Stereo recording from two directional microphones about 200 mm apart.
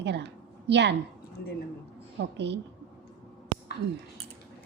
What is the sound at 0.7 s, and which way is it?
Speech, 60° right (ahead or behind).